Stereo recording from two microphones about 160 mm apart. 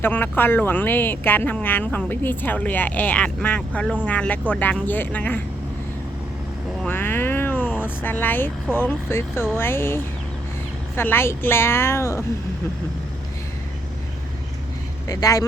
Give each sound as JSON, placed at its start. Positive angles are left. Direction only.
{"t": 0.0, "sound": "speech", "side_deg": 10}
{"t": 6.8, "sound": "vehicle", "side_deg": 15}
{"t": 8.7, "sound": "speech", "side_deg": 15}
{"t": 15.0, "sound": "speech", "side_deg": 20}